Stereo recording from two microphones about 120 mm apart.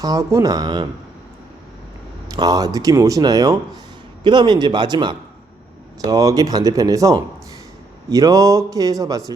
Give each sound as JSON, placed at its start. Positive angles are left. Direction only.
{"t": 0.0, "sound": "speech", "side_deg": -30}
{"t": 2.3, "sound": "speech", "side_deg": -30}